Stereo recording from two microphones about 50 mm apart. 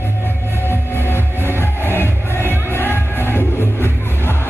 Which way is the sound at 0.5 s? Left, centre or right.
Left.